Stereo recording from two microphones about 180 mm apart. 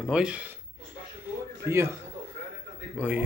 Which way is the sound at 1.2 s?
15° right (ahead or behind).